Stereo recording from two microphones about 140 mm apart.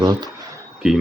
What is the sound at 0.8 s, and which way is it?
Speech, 5° right (ahead or behind).